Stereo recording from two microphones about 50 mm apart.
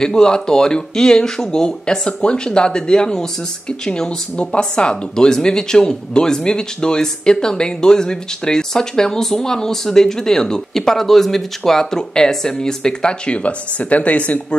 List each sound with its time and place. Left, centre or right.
0.0 s speech: centre